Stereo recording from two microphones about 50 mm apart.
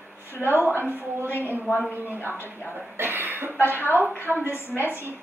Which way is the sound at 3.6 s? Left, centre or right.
Right.